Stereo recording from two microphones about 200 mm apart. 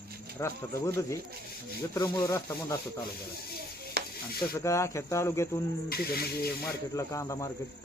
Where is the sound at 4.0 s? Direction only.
55° right (ahead or behind).